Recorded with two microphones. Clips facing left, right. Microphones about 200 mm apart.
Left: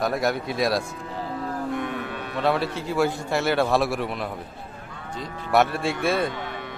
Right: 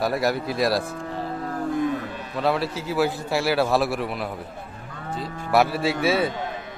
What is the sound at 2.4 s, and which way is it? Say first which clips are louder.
Speech: even; centre (ahead or behind).